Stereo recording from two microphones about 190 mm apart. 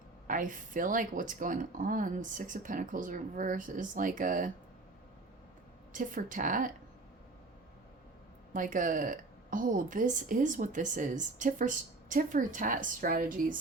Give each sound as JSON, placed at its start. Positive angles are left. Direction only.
{"t": 0.3, "sound": "a woman's voice", "side_deg": -45}
{"t": 5.9, "sound": "a woman's voice", "side_deg": -45}
{"t": 8.5, "sound": "a woman's voice", "side_deg": -45}